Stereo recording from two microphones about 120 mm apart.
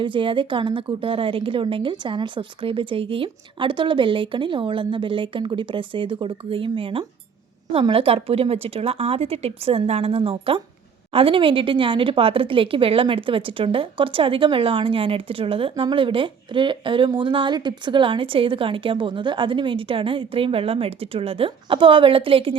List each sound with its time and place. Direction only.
0.0 s a woman's voice: 45° right (ahead or behind)